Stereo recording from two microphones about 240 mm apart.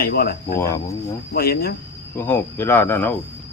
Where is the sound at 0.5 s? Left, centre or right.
Centre.